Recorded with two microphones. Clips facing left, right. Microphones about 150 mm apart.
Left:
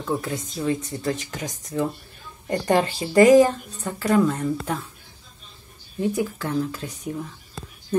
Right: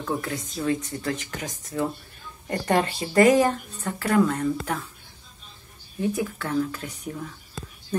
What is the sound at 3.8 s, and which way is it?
Speech, 15° left (ahead or behind).